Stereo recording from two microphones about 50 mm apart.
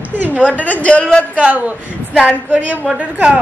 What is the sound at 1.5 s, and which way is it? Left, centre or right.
A woman's voice, right.